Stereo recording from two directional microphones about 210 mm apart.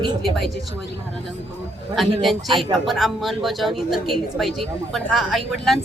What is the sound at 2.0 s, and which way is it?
Speech, centre (ahead or behind).